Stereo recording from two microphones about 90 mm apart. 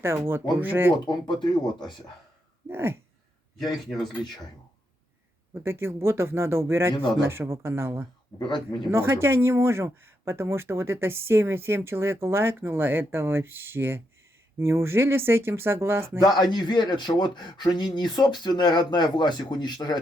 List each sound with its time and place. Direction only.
0.0 s speech: 25° right (ahead or behind)
1.0 s speech: 60° left (ahead or behind)
2.6 s speech: 25° right (ahead or behind)
5.6 s speech: 30° right (ahead or behind)
8.4 s speech: 55° left (ahead or behind)
8.9 s speech: 30° right (ahead or behind)
16.2 s speech: 50° left (ahead or behind)